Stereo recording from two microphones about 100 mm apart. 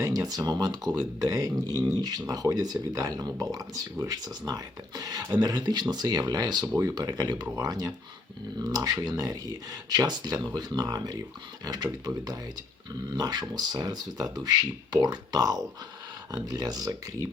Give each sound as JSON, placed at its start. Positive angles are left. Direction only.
{"t": 0.0, "sound": "speech", "side_deg": -35}